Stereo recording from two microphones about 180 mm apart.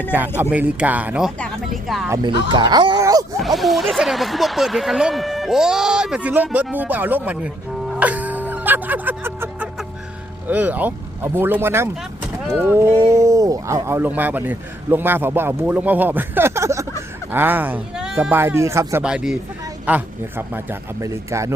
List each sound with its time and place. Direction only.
0.1 s speech: 10° right (ahead or behind)
2.0 s speech: 20° right (ahead or behind)
3.4 s speech: centre (ahead or behind)
7.9 s music: 10° right (ahead or behind)
10.5 s speech: 10° right (ahead or behind)
19.0 s speech: 5° right (ahead or behind)